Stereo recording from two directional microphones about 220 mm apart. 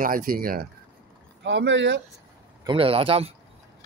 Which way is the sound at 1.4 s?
55° right (ahead or behind).